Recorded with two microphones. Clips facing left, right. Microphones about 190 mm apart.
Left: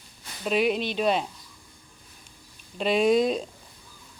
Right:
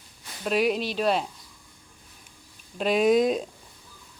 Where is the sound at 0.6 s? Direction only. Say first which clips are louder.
Even; 40° right (ahead or behind).